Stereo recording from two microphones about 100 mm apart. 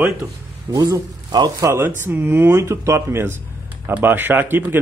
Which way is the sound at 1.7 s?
25° right (ahead or behind).